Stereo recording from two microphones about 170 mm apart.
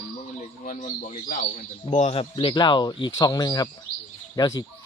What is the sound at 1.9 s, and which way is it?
Speech, 35° left (ahead or behind).